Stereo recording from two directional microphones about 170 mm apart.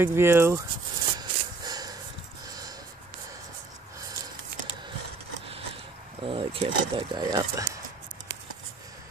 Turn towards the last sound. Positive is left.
turn(degrees=-20)  # may be behind; listen again after turning